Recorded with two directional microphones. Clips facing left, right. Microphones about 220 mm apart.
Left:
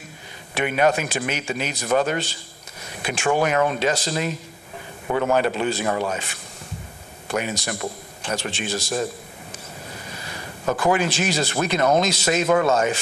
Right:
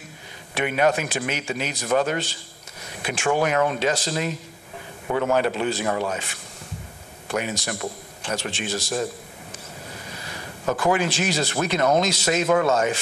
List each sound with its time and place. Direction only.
0.6 s a man's voice: 15° left (ahead or behind)
5.0 s a man's voice: 25° left (ahead or behind)
7.3 s speech: 15° left (ahead or behind)
10.6 s a man's voice: 25° left (ahead or behind)